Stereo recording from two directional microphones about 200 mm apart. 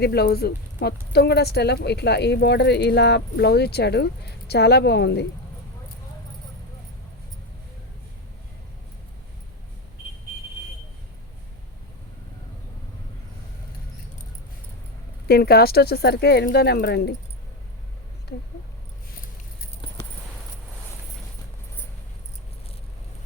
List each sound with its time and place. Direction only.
0.0 s speech: 55° left (ahead or behind)
15.3 s speech: 50° left (ahead or behind)